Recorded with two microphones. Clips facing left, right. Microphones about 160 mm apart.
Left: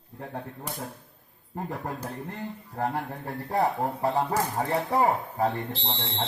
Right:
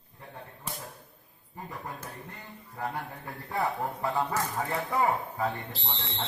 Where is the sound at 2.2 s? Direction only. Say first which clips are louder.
Left 10 dB; 45° left (ahead or behind).